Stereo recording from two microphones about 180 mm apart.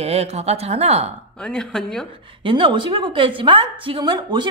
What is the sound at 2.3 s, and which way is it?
A woman's voice, 30° right (ahead or behind).